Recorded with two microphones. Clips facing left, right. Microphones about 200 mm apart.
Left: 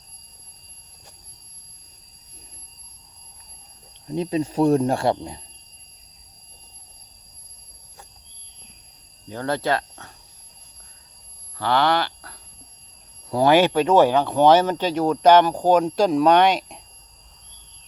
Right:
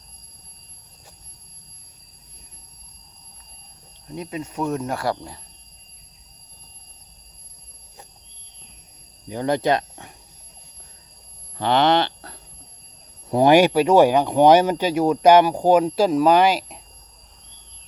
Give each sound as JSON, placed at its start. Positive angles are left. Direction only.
{"t": 4.1, "sound": "speech", "side_deg": 30}
{"t": 9.3, "sound": "speech", "side_deg": -15}
{"t": 11.5, "sound": "a sound", "side_deg": -20}
{"t": 13.3, "sound": "speech", "side_deg": -15}